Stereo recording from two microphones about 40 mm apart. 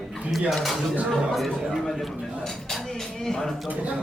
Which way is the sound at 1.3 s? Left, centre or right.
Centre.